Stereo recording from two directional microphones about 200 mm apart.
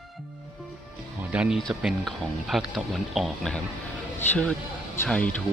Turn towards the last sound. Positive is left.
turn(degrees=5)  # may be behind; listen again after turning